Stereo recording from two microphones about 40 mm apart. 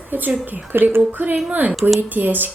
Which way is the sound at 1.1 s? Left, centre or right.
Right.